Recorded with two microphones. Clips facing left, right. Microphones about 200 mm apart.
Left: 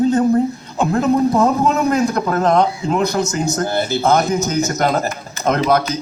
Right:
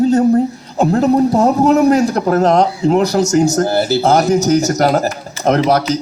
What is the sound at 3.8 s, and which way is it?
Speech, 80° right.